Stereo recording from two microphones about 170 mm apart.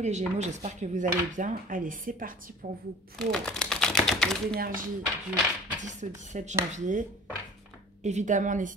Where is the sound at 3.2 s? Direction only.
5° left (ahead or behind).